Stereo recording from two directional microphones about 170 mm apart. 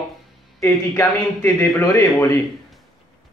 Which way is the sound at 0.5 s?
15° left (ahead or behind).